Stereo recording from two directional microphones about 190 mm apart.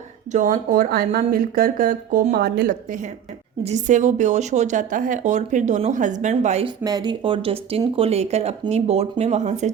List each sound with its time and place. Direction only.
0.3 s speech: 45° right (ahead or behind)
3.6 s a woman's voice: 35° right (ahead or behind)
6.8 s a woman's voice: 20° right (ahead or behind); by 9.7 s 35° right (ahead or behind)